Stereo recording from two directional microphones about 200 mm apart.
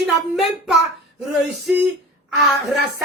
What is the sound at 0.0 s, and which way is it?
Speech, centre (ahead or behind).